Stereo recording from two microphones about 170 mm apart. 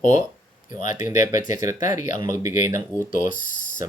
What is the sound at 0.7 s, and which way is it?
Speech, 50° left (ahead or behind).